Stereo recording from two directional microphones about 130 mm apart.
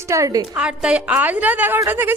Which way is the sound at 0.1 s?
25° right (ahead or behind).